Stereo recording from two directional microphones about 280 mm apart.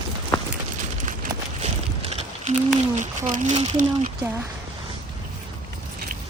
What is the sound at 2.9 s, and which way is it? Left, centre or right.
Speech, right.